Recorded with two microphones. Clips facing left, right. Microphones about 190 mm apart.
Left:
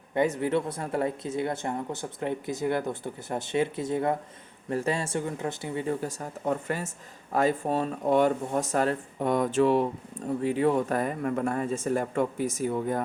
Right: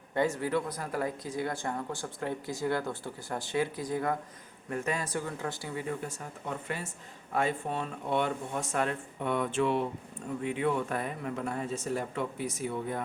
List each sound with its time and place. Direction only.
0.1 s speech: 20° left (ahead or behind); by 13.0 s 45° left (ahead or behind)